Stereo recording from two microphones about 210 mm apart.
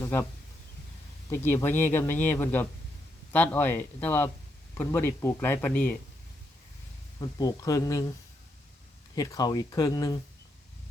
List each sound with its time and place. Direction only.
0.0 s speech: 10° left (ahead or behind)
1.3 s speech: 10° left (ahead or behind)
7.2 s speech: 20° left (ahead or behind)
9.1 s speech: 15° left (ahead or behind)